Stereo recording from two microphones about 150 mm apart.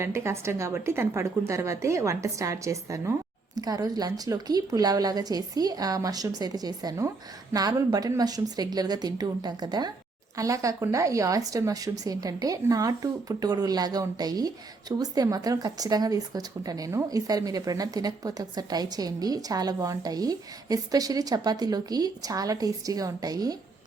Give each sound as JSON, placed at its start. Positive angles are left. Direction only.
{"t": 0.0, "sound": "speech", "side_deg": -20}